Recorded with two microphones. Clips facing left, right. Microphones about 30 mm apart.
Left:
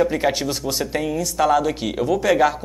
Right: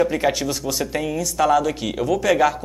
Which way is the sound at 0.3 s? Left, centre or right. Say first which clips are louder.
Even; centre.